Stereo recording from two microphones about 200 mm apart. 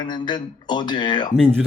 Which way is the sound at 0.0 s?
20° left (ahead or behind).